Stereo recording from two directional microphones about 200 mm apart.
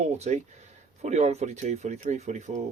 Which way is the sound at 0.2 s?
35° right (ahead or behind).